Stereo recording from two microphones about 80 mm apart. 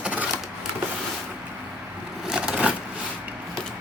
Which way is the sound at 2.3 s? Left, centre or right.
Centre.